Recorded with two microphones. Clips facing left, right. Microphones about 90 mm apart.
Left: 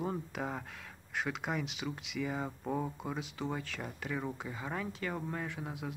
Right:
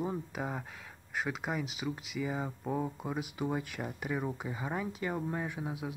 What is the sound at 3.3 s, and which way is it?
Speech, 15° right (ahead or behind).